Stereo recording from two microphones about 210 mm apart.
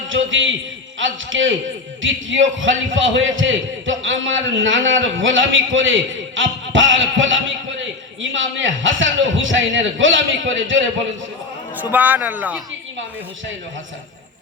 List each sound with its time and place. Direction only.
0.1 s a man's voice: 65° right (ahead or behind)
11.8 s speech: 10° right (ahead or behind)